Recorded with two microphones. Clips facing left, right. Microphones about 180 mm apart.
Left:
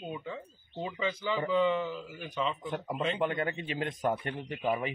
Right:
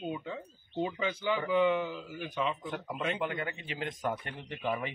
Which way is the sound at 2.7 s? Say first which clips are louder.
Left 2 dB; 30° left (ahead or behind).